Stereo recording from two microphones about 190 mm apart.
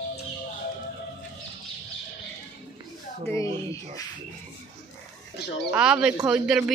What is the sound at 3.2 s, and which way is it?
Speech, 15° left (ahead or behind).